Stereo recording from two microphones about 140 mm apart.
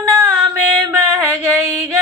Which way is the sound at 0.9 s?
15° right (ahead or behind).